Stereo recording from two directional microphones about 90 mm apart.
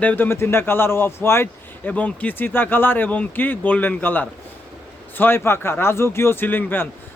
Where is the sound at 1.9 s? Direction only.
15° left (ahead or behind).